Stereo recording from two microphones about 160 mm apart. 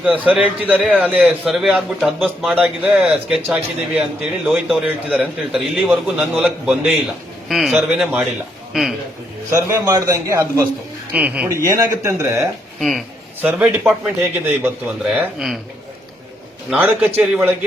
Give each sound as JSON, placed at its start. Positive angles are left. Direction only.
{"t": 0.0, "sound": "a man's voice", "side_deg": -10}
{"t": 9.5, "sound": "a man's voice", "side_deg": -20}
{"t": 11.1, "sound": "a man's voice", "side_deg": -10}
{"t": 11.4, "sound": "a man's voice", "side_deg": -20}
{"t": 16.6, "sound": "a man's voice", "side_deg": -10}